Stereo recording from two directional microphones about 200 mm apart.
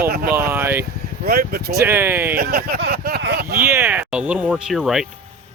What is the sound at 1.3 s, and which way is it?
Speech, 50° right (ahead or behind).